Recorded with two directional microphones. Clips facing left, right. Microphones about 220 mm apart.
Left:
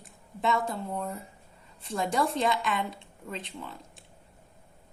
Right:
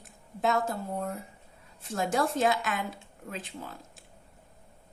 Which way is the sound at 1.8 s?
Centre (ahead or behind).